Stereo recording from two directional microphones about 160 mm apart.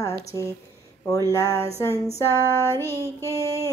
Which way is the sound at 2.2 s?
15° left (ahead or behind).